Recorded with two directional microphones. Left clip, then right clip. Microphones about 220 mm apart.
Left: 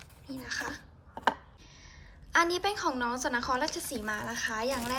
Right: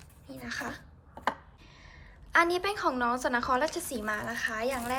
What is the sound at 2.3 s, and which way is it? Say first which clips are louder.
A woman's voice: right 1 dB; centre (ahead or behind).